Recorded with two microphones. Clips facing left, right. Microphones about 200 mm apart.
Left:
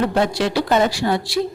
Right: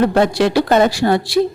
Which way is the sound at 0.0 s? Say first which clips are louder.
Right 5 dB; 65° right (ahead or behind).